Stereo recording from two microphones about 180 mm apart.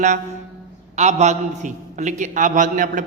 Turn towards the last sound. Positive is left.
turn(degrees=-45)  # may be behind; listen again after turning